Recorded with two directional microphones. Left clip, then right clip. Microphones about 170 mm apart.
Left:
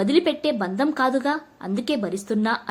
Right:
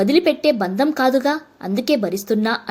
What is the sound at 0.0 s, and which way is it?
A woman's voice, 20° right (ahead or behind).